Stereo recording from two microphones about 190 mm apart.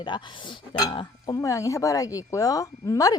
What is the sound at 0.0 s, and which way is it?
Speech, 25° left (ahead or behind).